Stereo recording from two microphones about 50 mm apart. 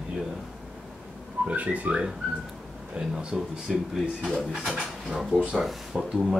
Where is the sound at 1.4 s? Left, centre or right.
Right.